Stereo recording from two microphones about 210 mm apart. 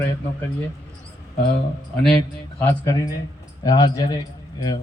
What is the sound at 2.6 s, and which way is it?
A man's voice, 15° left (ahead or behind).